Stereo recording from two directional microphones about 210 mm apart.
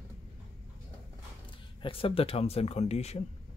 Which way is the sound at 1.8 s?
25° left (ahead or behind).